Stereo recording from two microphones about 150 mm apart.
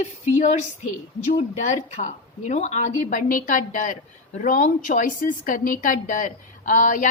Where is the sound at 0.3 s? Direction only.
50° left (ahead or behind).